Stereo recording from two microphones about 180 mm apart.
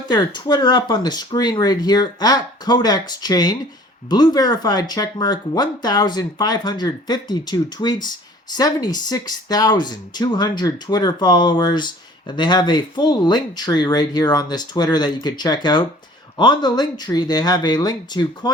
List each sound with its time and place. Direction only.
0.1 s speech: 25° left (ahead or behind)